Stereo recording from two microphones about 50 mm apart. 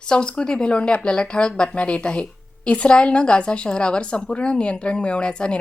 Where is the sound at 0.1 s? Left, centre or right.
Centre.